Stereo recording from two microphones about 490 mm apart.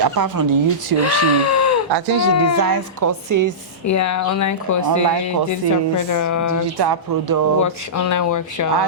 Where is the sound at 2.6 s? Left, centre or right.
Right.